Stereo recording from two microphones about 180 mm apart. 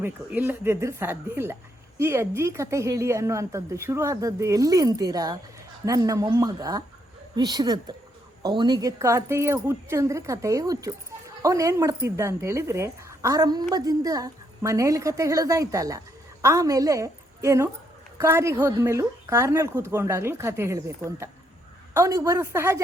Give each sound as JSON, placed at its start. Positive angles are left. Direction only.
{"t": 0.0, "sound": "a woman's voice", "side_deg": -10}